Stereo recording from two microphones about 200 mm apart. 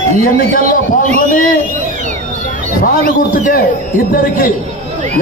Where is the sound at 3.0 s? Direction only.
45° left (ahead or behind).